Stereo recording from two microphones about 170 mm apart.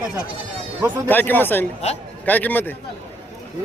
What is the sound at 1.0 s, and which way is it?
A man's voice, 10° left (ahead or behind).